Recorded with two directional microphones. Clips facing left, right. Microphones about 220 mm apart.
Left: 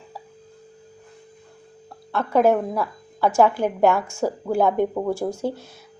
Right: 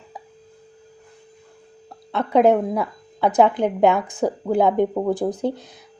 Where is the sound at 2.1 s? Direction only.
20° right (ahead or behind).